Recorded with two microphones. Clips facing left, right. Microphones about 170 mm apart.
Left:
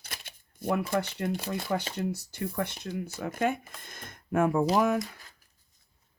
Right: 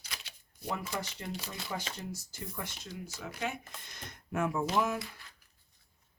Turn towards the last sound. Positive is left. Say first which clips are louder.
# left 8 dB
turn(degrees=50)  # may be behind; listen again after turning